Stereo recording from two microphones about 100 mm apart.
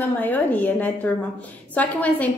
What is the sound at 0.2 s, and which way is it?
A woman's voice, 15° left (ahead or behind).